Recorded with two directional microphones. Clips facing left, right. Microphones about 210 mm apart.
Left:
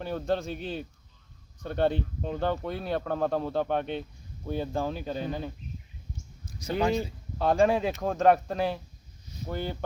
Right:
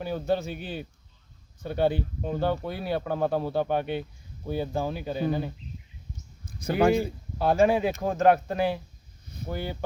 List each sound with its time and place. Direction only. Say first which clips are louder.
0.0 s speech: right 2 dB; 5° right (ahead or behind)
6.4 s a sound: right 5 dB; 55° right (ahead or behind)
7.3 s speech: right 1 dB; 5° right (ahead or behind)